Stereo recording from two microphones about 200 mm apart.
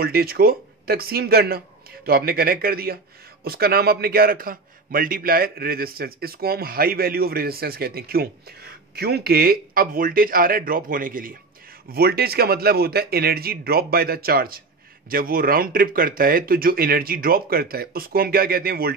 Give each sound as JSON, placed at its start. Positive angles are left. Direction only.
{"t": 0.0, "sound": "a man's voice", "side_deg": -50}